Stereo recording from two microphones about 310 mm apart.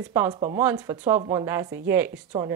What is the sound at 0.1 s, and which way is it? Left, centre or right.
Speech, centre.